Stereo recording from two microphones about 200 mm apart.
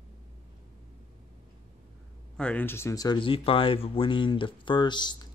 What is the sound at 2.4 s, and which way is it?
Speech, 5° left (ahead or behind).